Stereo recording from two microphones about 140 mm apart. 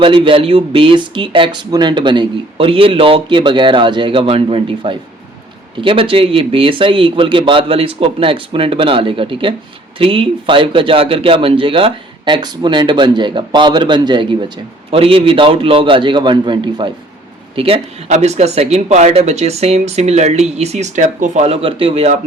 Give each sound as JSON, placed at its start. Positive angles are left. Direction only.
{"t": 0.0, "sound": "speech", "side_deg": -40}